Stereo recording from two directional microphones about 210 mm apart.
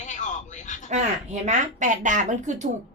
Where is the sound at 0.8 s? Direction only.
35° right (ahead or behind).